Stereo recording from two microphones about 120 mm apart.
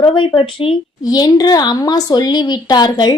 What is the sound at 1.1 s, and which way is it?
A woman's voice, 35° left (ahead or behind).